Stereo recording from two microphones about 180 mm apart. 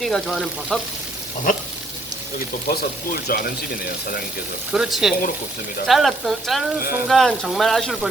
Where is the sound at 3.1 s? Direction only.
55° left (ahead or behind).